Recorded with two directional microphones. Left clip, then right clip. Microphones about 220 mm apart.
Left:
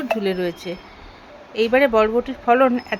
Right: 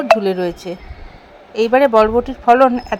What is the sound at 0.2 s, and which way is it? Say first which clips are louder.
A woman's voice: right 4 dB; 10° right (ahead or behind).